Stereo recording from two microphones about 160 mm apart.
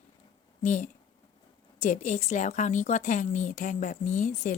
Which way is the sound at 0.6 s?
50° left (ahead or behind).